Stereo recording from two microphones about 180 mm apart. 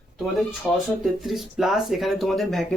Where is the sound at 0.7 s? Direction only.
Centre (ahead or behind).